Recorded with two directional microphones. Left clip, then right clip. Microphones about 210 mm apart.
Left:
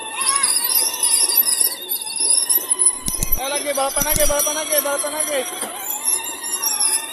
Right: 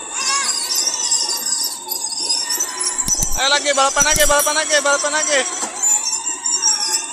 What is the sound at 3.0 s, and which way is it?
Jingle bell, centre (ahead or behind).